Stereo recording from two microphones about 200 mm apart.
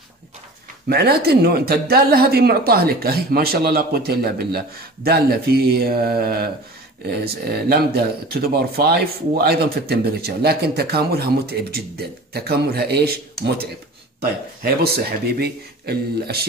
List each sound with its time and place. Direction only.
0.8 s speech: 50° right (ahead or behind)